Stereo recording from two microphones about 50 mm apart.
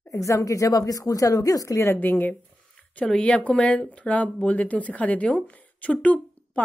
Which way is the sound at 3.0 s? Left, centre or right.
Centre.